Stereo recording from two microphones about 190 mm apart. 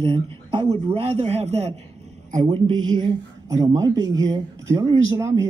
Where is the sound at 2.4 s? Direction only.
20° right (ahead or behind).